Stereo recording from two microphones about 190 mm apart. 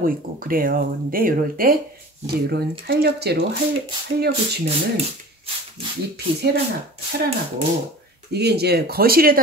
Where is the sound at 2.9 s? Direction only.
55° right (ahead or behind).